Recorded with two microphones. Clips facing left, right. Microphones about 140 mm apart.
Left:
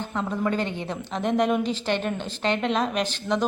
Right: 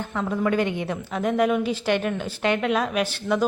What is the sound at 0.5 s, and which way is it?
A woman's voice, 15° right (ahead or behind).